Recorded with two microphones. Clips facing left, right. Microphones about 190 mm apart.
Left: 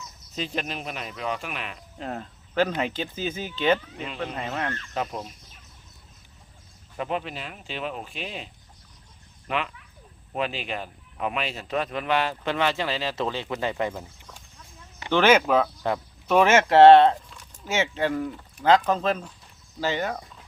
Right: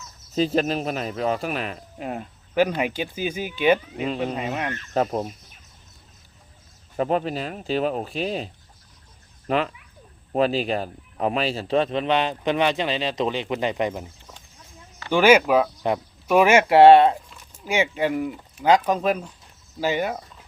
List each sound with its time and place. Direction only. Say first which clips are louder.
0.3 s speech: right 10 dB; 40° right (ahead or behind)
2.0 s speech: right 1 dB; 10° right (ahead or behind)
6.9 s speech: right 7 dB; 40° right (ahead or behind)
9.5 s a man's voice: right 6 dB; 35° right (ahead or behind); by 14.1 s 15° right (ahead or behind)
15.1 s a man's voice: right 3 dB; 10° right (ahead or behind)